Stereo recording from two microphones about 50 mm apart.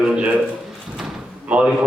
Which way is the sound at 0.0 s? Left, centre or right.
Centre.